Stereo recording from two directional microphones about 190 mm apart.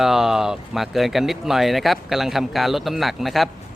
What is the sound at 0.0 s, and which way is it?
Speech, centre (ahead or behind).